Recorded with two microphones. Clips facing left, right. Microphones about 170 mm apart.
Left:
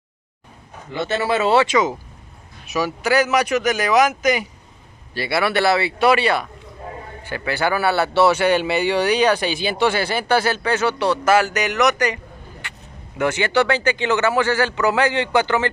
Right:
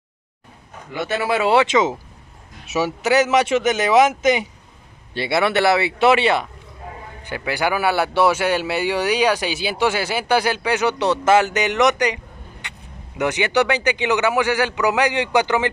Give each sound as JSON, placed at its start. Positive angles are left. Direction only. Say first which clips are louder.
{"t": 0.9, "sound": "a man's voice", "louder": "left 1 dB", "side_deg": -10}
{"t": 13.2, "sound": "a man's voice", "louder": "even", "side_deg": -15}